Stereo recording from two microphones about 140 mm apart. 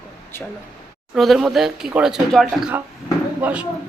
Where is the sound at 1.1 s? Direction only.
Centre (ahead or behind).